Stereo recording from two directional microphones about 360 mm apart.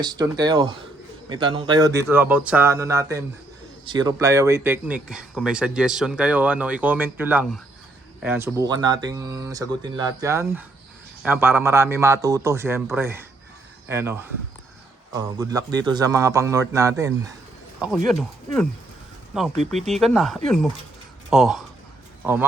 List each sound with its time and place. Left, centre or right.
0.0 s speech: centre
19.5 s speech: centre
19.9 s speech: centre